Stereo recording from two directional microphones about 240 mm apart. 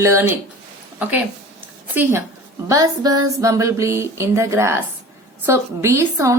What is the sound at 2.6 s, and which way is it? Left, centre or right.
Speech, centre.